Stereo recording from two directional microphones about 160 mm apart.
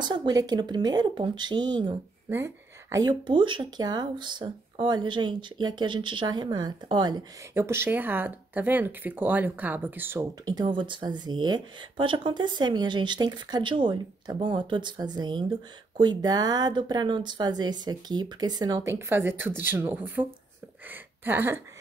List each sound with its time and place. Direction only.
0.0 s speech: 30° right (ahead or behind)
2.2 s speech: 15° right (ahead or behind)
7.5 s speech: 15° right (ahead or behind)
10.4 s speech: 25° right (ahead or behind)